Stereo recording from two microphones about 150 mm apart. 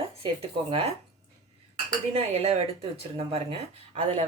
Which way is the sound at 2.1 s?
45° right (ahead or behind).